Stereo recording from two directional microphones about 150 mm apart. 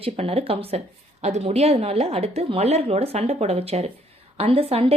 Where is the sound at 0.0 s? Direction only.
40° right (ahead or behind).